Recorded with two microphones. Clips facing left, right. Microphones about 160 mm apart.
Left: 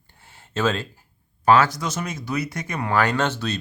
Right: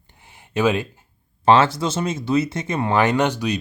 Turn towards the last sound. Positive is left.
turn(degrees=-15)  # may be behind; listen again after turning